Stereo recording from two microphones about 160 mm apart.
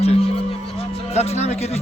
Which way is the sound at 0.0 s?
40° left (ahead or behind).